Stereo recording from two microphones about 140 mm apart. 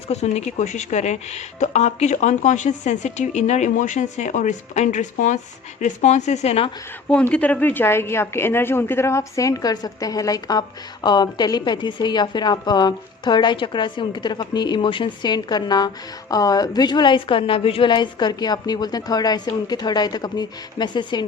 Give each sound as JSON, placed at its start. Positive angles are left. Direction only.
{"t": 0.1, "sound": "speech", "side_deg": 50}
{"t": 7.1, "sound": "a woman's voice", "side_deg": 10}